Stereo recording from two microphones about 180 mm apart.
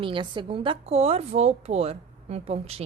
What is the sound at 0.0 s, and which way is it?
A woman's voice, 25° right (ahead or behind).